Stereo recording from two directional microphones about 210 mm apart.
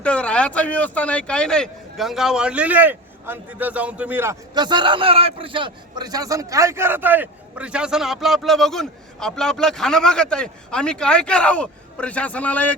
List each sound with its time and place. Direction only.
0.0 s speech: 5° left (ahead or behind)